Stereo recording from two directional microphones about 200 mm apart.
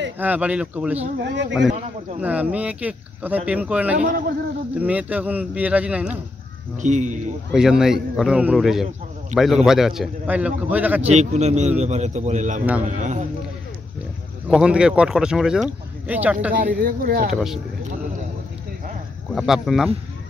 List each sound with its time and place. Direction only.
0.2 s speech: 5° right (ahead or behind)
1.2 s a man's voice: 60° right (ahead or behind)
2.1 s speech: 5° right (ahead or behind)
6.8 s speech: 35° right (ahead or behind)
7.5 s a man's voice: 5° right (ahead or behind)
11.1 s speech: 35° right (ahead or behind)
14.5 s a man's voice: 5° right (ahead or behind)
16.5 s speech: 45° right (ahead or behind)
17.3 s a man's voice: centre (ahead or behind)
19.3 s a man's voice: centre (ahead or behind)